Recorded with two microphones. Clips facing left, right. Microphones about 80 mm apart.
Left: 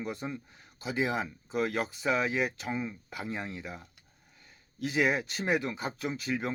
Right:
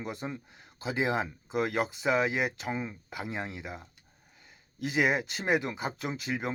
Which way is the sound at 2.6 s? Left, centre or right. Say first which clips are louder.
Even; right.